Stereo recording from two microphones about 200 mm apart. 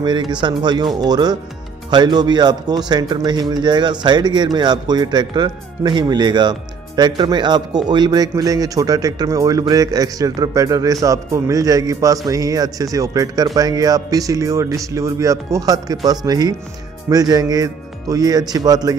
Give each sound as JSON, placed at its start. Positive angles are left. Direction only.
{"t": 0.0, "sound": "a man's voice", "side_deg": -20}